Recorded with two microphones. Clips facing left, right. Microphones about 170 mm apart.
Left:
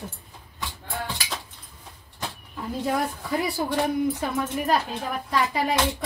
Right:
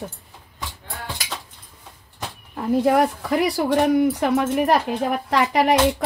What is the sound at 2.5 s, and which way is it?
A woman's voice, 70° right (ahead or behind).